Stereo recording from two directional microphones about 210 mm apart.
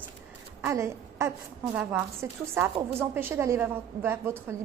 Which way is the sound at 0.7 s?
15° right (ahead or behind).